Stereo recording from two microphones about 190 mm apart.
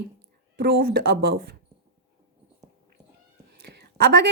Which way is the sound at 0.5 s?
55° right (ahead or behind).